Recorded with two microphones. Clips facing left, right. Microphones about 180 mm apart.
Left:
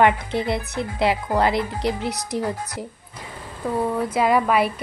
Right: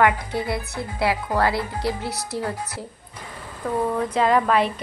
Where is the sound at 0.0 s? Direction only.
25° left (ahead or behind).